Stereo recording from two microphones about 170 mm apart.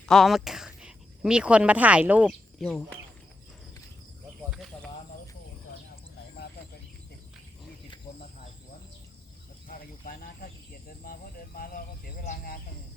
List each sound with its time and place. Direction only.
0.0 s speech: centre (ahead or behind)
4.5 s a sound: centre (ahead or behind)
9.6 s cricket: 55° left (ahead or behind)